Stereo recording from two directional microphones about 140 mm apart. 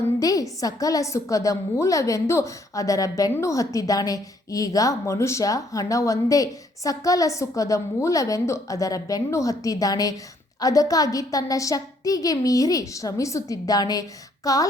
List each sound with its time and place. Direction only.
0.2 s a woman's voice: 25° left (ahead or behind)